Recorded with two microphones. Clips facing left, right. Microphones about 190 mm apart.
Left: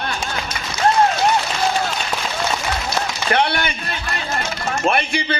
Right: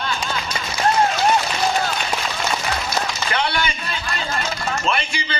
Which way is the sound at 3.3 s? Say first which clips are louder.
Left 7 dB; 55° left (ahead or behind).